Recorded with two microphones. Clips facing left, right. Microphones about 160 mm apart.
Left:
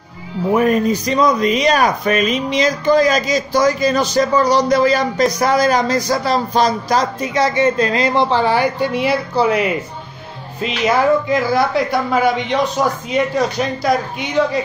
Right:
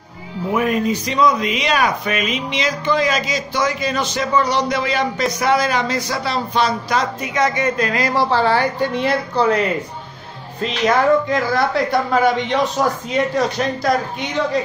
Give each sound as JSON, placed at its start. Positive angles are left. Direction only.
{"t": 0.5, "sound": "speech", "side_deg": 40}
{"t": 10.8, "sound": "speech", "side_deg": 5}